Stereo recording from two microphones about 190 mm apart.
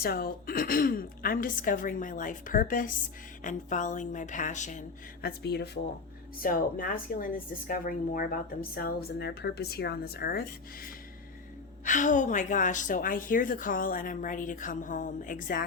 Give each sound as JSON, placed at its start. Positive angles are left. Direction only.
{"t": 0.0, "sound": "speech", "side_deg": 50}
{"t": 5.4, "sound": "speech", "side_deg": 60}
{"t": 6.4, "sound": "speech", "side_deg": 45}
{"t": 11.9, "sound": "speech", "side_deg": 40}